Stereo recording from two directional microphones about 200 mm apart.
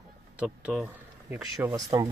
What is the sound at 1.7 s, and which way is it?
Speech, 20° right (ahead or behind).